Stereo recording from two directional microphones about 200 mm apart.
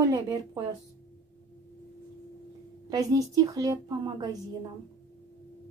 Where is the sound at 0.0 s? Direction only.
20° right (ahead or behind).